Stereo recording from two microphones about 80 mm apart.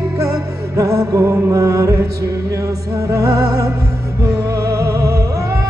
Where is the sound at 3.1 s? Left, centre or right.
Right.